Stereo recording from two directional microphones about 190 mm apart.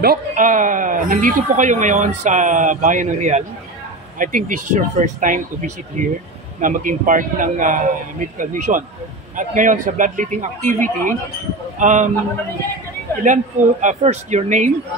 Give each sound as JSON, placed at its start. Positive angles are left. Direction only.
{"t": 0.0, "sound": "speech", "side_deg": -50}
{"t": 13.2, "sound": "speech", "side_deg": -40}